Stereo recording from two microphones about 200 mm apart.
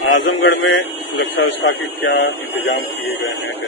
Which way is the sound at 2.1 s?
55° left (ahead or behind).